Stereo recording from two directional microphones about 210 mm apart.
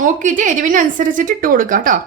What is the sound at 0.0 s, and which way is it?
A woman's voice, 35° right (ahead or behind).